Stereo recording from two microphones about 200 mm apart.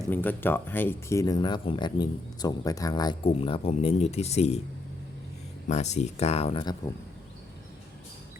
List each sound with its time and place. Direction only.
0.1 s speech: 10° left (ahead or behind); by 4.6 s 30° left (ahead or behind)
5.6 s speech: 35° left (ahead or behind)